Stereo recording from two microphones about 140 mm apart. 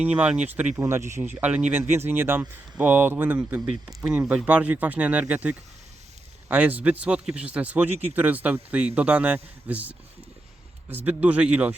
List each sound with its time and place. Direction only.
0.0 s a man's voice: 10° right (ahead or behind)